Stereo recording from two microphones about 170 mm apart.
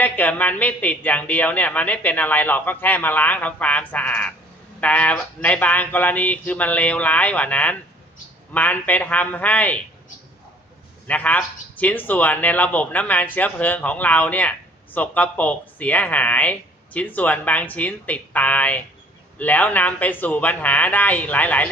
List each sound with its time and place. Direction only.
0.0 s a man's voice: 10° left (ahead or behind)
11.0 s a man's voice: 10° left (ahead or behind)